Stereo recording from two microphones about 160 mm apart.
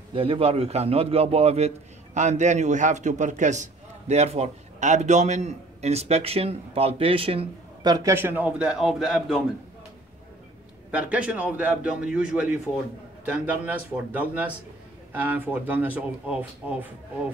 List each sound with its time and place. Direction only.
0.1 s a man's voice: 35° right (ahead or behind); by 9.4 s 5° right (ahead or behind)
10.9 s speech: 10° right (ahead or behind)